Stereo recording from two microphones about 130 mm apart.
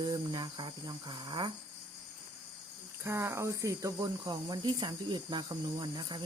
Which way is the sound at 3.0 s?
20° right (ahead or behind).